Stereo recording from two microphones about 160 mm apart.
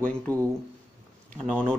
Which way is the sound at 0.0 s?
10° left (ahead or behind).